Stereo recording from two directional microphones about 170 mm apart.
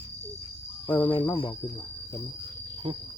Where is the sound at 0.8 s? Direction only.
10° left (ahead or behind).